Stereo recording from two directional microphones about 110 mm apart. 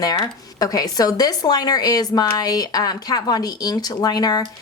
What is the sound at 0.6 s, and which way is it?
A woman's voice, 35° left (ahead or behind).